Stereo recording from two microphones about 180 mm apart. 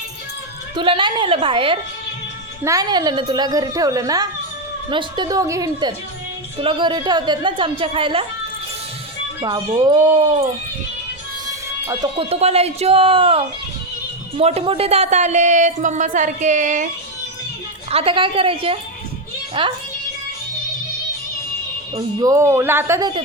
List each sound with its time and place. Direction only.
0.8 s a woman's voice: 30° right (ahead or behind)
9.4 s a woman's voice: 25° right (ahead or behind)
11.9 s a woman's voice: 25° right (ahead or behind); by 16.9 s 45° right (ahead or behind)
17.9 s a woman's voice: 30° right (ahead or behind)
21.9 s a woman's voice: 20° right (ahead or behind)